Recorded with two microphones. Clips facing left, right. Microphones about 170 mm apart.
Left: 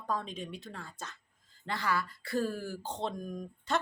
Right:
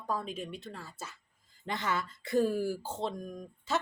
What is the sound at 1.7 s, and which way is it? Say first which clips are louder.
A woman's voice: even; 20° right (ahead or behind).